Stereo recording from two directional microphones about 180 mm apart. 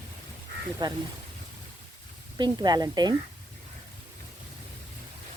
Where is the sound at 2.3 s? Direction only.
25° right (ahead or behind).